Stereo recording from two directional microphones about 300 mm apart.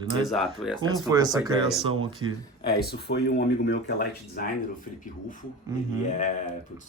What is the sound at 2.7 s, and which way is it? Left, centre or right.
Speech, left.